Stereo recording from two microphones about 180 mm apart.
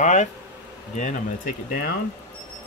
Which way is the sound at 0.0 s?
40° left (ahead or behind).